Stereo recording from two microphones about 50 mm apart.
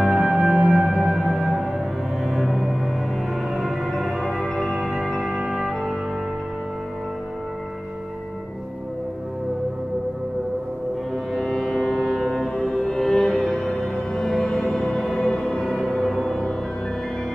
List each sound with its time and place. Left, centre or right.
0.0 s music: centre
11.4 s a sound: centre
12.0 s ship: centre
12.3 s music: centre